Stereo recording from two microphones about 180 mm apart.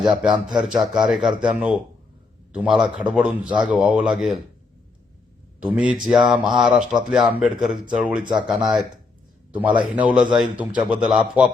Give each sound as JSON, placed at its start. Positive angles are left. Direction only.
{"t": 0.0, "sound": "a man's voice", "side_deg": -5}
{"t": 5.5, "sound": "a man's voice", "side_deg": -5}
{"t": 8.2, "sound": "speech", "side_deg": -25}
{"t": 8.4, "sound": "a man's voice", "side_deg": 0}